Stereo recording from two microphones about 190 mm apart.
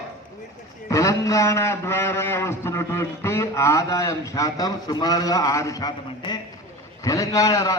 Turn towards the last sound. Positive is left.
turn(degrees=20)  # may be behind; listen again after turning